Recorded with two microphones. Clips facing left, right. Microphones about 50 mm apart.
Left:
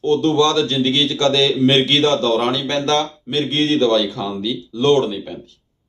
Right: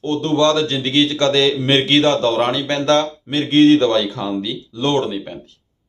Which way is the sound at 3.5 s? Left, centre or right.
Right.